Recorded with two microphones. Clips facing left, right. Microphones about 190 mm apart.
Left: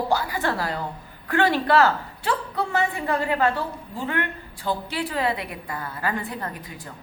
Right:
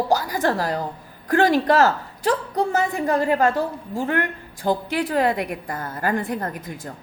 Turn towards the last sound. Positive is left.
turn(degrees=-45)  # may be behind; listen again after turning